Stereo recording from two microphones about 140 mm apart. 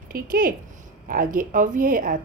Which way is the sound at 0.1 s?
80° right.